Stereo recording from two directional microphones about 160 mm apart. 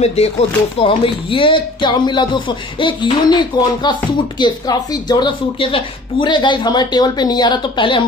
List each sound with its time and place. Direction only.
0.0 s a woman's voice: 40° left (ahead or behind)